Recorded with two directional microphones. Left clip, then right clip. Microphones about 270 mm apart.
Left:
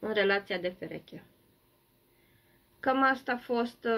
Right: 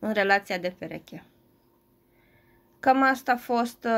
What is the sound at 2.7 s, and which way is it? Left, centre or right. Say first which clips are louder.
Speech: right 5 dB; right.